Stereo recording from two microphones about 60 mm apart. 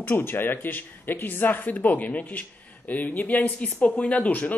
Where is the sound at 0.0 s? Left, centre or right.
Left.